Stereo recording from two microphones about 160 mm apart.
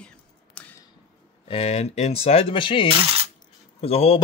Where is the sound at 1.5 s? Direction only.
40° left (ahead or behind).